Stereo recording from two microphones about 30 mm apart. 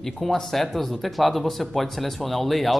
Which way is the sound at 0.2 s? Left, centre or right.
Centre.